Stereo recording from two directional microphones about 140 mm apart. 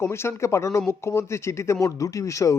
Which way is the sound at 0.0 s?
20° left (ahead or behind).